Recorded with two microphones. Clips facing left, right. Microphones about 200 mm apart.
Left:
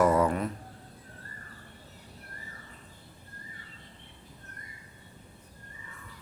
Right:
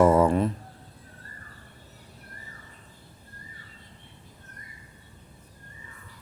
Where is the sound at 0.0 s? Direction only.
25° right (ahead or behind).